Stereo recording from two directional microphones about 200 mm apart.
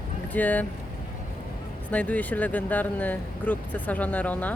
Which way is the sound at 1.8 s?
5° left (ahead or behind).